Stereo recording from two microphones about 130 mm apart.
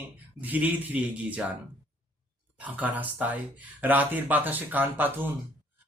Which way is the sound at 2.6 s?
10° right (ahead or behind).